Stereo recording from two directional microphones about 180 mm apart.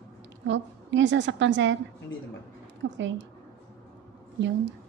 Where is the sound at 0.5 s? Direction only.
90° right.